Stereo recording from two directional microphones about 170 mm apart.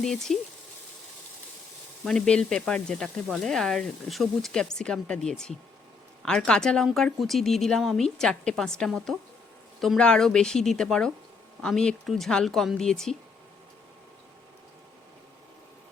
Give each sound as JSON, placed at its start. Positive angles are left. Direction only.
{"t": 0.0, "sound": "speech", "side_deg": 5}
{"t": 2.0, "sound": "speech", "side_deg": 5}